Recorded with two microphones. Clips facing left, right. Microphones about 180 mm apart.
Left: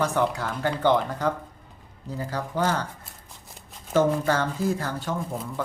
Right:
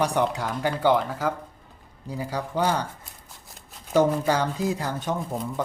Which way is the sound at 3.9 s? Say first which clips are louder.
Right 1 dB; 15° right (ahead or behind).